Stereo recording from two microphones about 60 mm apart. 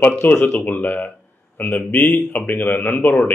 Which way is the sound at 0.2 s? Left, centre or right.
Left.